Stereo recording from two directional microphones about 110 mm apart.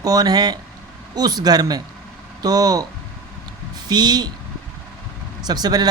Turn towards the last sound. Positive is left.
turn(degrees=-40)  # may be behind; listen again after turning